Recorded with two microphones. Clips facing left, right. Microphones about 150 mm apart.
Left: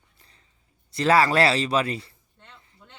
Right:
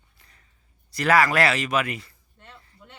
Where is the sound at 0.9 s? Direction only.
25° left (ahead or behind).